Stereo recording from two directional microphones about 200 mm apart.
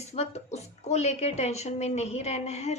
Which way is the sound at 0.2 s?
35° left (ahead or behind).